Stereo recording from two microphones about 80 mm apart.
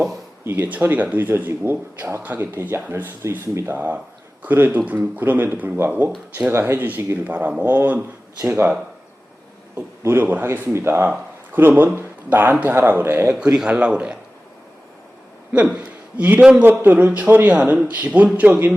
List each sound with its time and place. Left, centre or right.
0.4 s speech: right
10.0 s speech: right
13.3 s a man's voice: centre
15.5 s a man's voice: centre